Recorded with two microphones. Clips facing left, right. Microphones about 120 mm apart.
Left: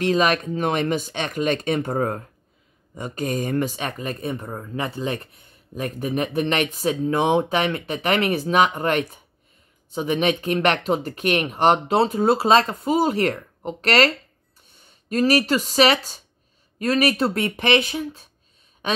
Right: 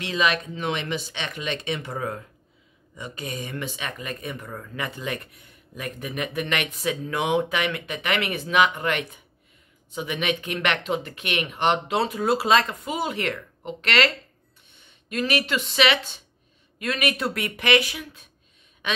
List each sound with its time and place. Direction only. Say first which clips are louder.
0.0 s a woman's voice: left 5 dB; 45° left (ahead or behind)